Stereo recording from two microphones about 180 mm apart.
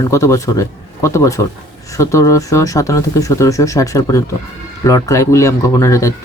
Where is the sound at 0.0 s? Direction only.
15° left (ahead or behind).